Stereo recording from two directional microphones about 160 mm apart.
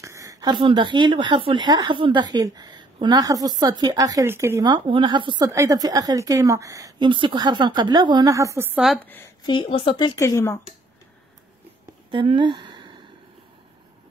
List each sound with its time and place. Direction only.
0.0 s speech: 20° right (ahead or behind)
8.7 s a woman's voice: centre (ahead or behind)
9.0 s a woman's voice: 10° left (ahead or behind)
9.5 s speech: 30° left (ahead or behind)
12.1 s a sound: 30° right (ahead or behind)